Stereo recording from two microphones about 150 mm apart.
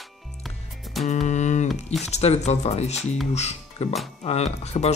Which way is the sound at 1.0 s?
50° left (ahead or behind).